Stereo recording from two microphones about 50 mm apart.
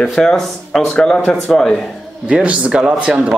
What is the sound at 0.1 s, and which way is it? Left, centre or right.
Speech, centre.